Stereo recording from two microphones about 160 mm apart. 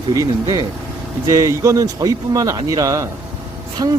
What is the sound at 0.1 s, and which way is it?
Speech, 25° right (ahead or behind).